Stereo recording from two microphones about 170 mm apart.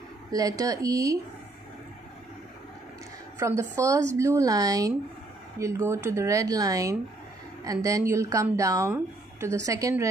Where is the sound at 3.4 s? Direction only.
15° right (ahead or behind).